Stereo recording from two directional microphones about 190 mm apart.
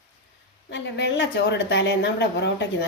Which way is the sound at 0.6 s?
70° left (ahead or behind).